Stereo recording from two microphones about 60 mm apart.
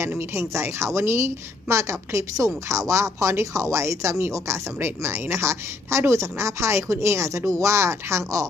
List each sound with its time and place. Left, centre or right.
0.3 s a woman's voice: right
2.3 s speech: right